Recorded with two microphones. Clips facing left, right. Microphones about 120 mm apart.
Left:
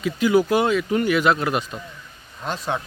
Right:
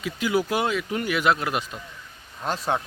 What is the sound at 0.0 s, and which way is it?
Speech, 10° right (ahead or behind).